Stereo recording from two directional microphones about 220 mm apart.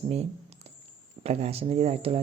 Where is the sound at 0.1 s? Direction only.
30° right (ahead or behind).